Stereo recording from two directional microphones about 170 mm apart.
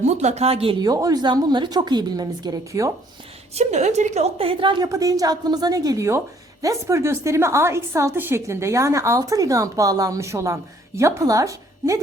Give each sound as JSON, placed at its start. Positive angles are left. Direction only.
{"t": 0.0, "sound": "a woman's voice", "side_deg": -40}
{"t": 3.5, "sound": "a woman's voice", "side_deg": -40}